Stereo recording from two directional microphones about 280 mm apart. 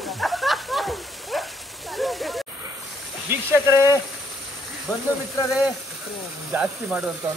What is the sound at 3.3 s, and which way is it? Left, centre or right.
Speech, centre.